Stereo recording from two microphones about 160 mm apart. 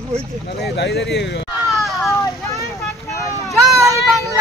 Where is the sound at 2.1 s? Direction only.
20° left (ahead or behind).